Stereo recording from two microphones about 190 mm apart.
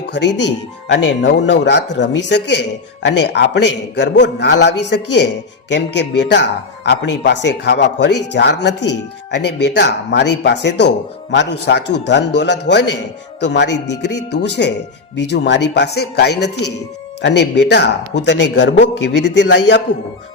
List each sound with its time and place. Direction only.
0.1 s a man's voice: 65° left (ahead or behind)